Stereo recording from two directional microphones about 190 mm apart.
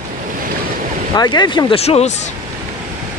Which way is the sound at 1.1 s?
20° left (ahead or behind).